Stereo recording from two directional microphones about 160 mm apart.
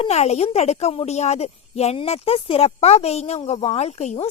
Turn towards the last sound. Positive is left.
turn(degrees=45)  # may be behind; listen again after turning